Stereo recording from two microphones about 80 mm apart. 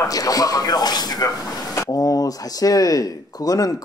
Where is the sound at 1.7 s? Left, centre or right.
Left.